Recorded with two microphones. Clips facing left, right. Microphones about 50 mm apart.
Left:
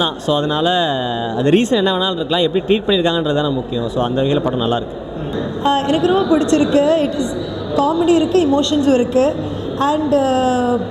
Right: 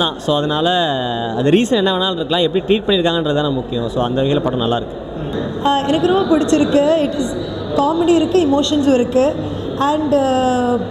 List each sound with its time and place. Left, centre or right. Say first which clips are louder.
0.0 s a woman's voice: even; centre